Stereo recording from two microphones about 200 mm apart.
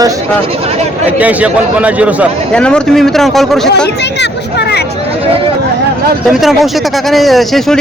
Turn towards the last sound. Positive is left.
turn(degrees=0)  # may be behind; listen again after turning